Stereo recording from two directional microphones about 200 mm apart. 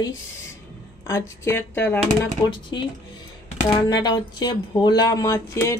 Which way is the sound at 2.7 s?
20° left (ahead or behind).